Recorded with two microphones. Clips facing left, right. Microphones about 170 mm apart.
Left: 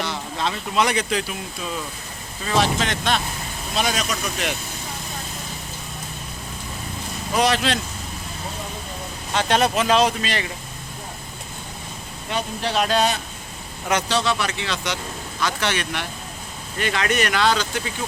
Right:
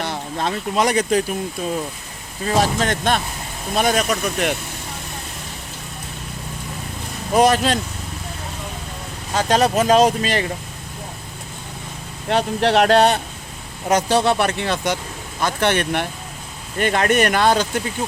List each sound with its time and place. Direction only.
0.0 s speech: 50° right (ahead or behind)
7.3 s speech: 45° right (ahead or behind)
9.3 s speech: 40° right (ahead or behind)
12.3 s speech: 70° right (ahead or behind); by 17.8 s 50° right (ahead or behind)